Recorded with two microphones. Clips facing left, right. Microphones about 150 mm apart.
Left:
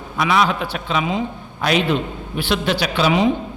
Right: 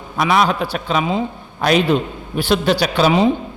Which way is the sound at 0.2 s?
45° right (ahead or behind).